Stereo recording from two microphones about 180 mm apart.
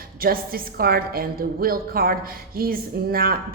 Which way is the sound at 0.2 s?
55° right (ahead or behind).